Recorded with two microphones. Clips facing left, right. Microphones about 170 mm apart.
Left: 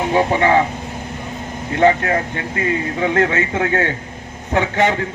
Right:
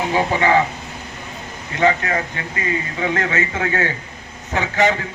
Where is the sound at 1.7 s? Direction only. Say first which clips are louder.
Left 4 dB; 55° left (ahead or behind).